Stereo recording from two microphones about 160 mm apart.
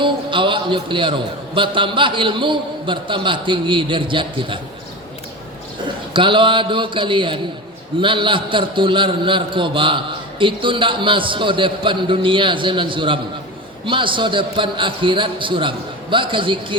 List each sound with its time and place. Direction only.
0.0 s a man's voice: 30° right (ahead or behind)
6.1 s a man's voice: 30° right (ahead or behind)